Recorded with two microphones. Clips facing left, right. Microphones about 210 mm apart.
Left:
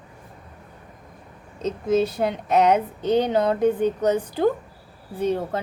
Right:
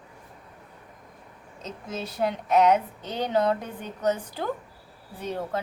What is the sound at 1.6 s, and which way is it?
Speech, 20° left (ahead or behind).